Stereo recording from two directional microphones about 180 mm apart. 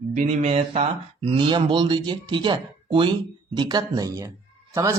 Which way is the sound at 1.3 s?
25° right (ahead or behind).